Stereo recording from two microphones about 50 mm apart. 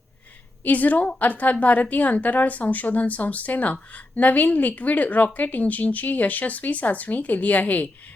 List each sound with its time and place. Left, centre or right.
0.6 s a woman's voice: left